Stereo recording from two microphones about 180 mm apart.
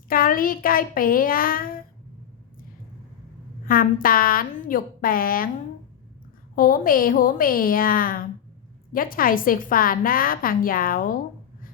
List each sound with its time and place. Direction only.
0.1 s speech: 50° left (ahead or behind)
3.7 s a woman's voice: 50° left (ahead or behind)
6.6 s a woman's voice: 50° left (ahead or behind)